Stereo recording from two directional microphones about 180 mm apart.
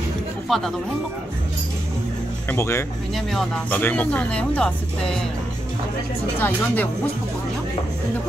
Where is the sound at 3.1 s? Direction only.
Centre (ahead or behind).